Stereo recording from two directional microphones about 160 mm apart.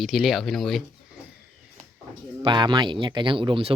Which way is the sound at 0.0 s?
Centre (ahead or behind).